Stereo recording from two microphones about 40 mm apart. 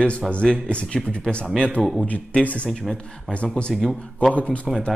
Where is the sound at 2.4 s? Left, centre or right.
Left.